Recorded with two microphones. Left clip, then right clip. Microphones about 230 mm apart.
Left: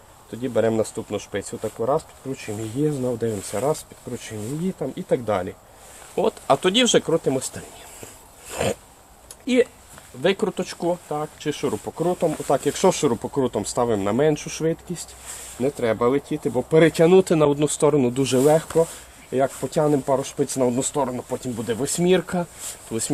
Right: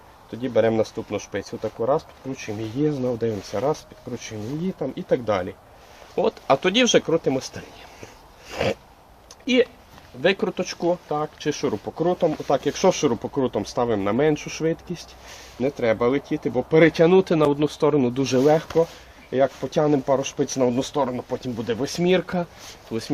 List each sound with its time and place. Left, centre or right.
0.3 s speech: left
8.0 s a sound: left
10.2 s speech: left